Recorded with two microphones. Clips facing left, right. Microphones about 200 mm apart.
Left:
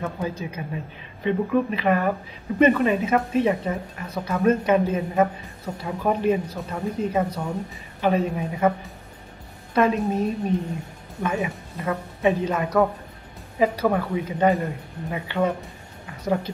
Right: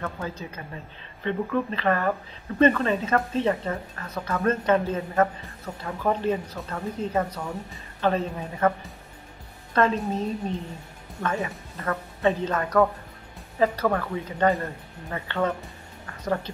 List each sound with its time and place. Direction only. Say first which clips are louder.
0.0 s speech: left 4 dB; 10° left (ahead or behind)
9.8 s speech: left 3 dB; 10° left (ahead or behind)
11.2 s speech: left 2 dB; 15° left (ahead or behind)